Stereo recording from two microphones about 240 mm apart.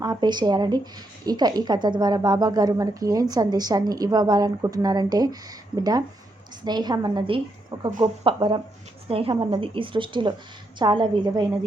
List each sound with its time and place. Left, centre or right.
0.0 s a woman's voice: centre